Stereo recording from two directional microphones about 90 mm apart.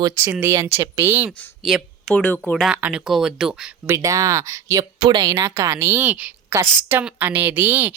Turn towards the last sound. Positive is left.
turn(degrees=-20)  # may be behind; listen again after turning